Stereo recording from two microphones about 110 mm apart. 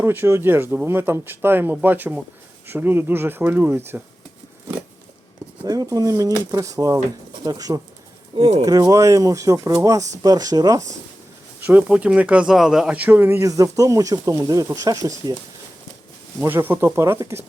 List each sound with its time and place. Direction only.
0.0 s speech: 20° right (ahead or behind)
5.6 s speech: 35° right (ahead or behind)
11.6 s speech: 15° right (ahead or behind); by 15.4 s 35° right (ahead or behind)
16.4 s speech: 20° right (ahead or behind)